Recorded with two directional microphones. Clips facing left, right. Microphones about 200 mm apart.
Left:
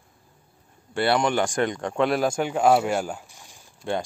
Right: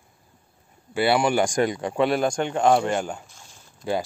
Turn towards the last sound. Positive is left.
turn(degrees=-5)  # may be behind; listen again after turning